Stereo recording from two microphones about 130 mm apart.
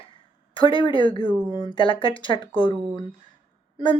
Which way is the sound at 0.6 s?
40° left (ahead or behind).